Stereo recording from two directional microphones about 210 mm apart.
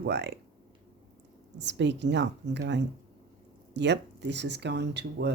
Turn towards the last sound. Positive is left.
turn(degrees=-55)  # may be behind; listen again after turning